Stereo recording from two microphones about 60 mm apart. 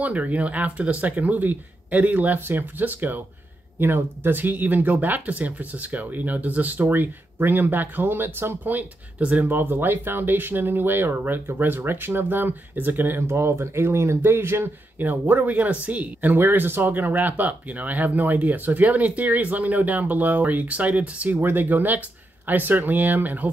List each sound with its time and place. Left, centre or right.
0.0 s speech: right
15.0 s speech: right
16.3 s speech: right